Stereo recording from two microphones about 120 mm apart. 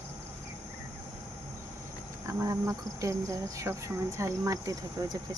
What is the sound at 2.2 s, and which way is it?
Speech, 25° right (ahead or behind).